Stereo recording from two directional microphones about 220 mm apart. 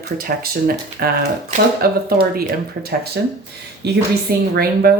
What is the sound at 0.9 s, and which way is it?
Speech, 45° right (ahead or behind).